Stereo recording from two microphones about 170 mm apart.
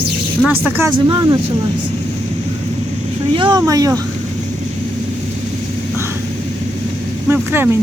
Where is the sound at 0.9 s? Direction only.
25° right (ahead or behind).